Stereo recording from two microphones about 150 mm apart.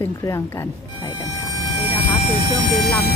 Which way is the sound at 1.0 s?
25° left (ahead or behind).